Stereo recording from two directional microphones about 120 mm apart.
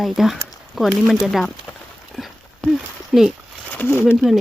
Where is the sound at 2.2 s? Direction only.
Centre (ahead or behind).